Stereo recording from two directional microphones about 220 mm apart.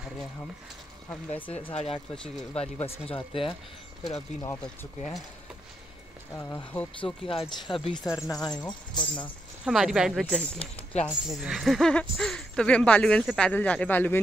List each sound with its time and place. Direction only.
1.5 s speech: 25° left (ahead or behind)
4.4 s speech: 5° left (ahead or behind)
6.3 s speech: 10° left (ahead or behind)
7.2 s speech: 20° left (ahead or behind)
9.7 s speech: centre (ahead or behind)